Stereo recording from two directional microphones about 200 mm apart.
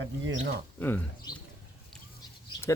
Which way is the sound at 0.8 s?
10° left (ahead or behind).